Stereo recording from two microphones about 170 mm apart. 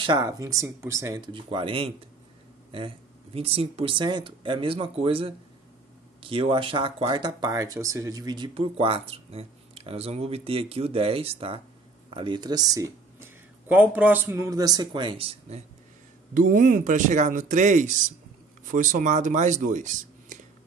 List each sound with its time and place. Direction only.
0.0 s speech: 25° right (ahead or behind)
16.3 s speech: 50° right (ahead or behind)